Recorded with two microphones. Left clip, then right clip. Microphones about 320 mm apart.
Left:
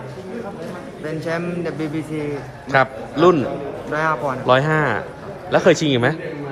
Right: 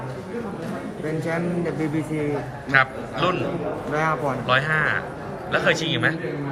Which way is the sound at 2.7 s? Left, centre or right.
Centre.